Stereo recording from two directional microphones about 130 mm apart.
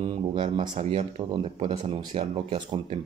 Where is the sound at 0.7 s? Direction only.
55° right (ahead or behind).